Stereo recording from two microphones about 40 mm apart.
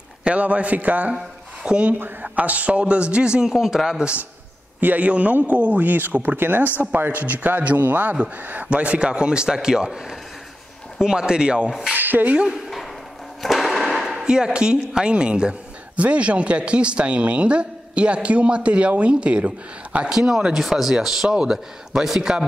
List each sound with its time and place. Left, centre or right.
0.2 s speech: right
1.6 s speech: right
3.4 s a man's voice: centre
4.7 s speech: right
7.1 s speech: right
8.6 s speech: right
11.0 s speech: centre
11.9 s speech: right
13.4 s a sound: centre
14.2 s speech: centre
20.1 s a man's voice: centre
20.6 s a man's voice: centre